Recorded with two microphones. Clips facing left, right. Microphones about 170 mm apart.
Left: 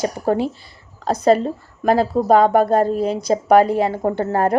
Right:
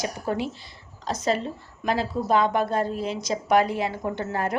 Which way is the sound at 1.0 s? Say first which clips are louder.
Left 10 dB; 55° left (ahead or behind).